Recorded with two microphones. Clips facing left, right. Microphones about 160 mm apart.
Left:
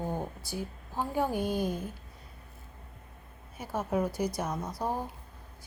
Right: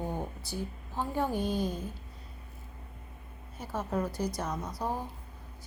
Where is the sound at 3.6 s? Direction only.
10° left (ahead or behind).